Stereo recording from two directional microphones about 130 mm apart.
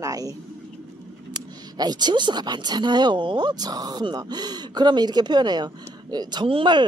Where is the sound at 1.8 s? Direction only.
30° right (ahead or behind).